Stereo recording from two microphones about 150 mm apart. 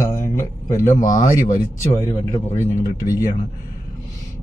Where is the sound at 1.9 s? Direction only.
20° left (ahead or behind).